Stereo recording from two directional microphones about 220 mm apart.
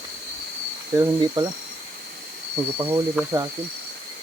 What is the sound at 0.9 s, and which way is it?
Speech, 15° right (ahead or behind).